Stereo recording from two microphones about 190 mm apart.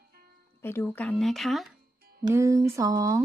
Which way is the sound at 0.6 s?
10° left (ahead or behind).